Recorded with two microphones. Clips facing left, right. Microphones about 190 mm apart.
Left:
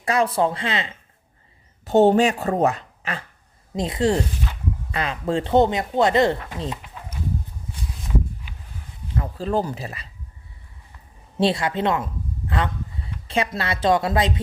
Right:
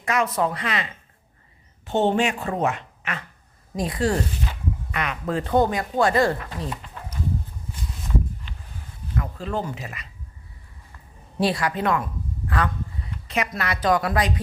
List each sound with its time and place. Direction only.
0.0 s speech: 30° left (ahead or behind)
1.8 s speech: 40° left (ahead or behind); by 6.7 s 20° left (ahead or behind)
9.1 s speech: 30° left (ahead or behind)
11.3 s speech: 25° left (ahead or behind)